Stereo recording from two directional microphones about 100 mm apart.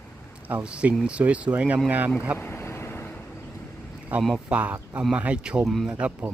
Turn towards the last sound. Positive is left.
turn(degrees=-15)  # may be behind; listen again after turning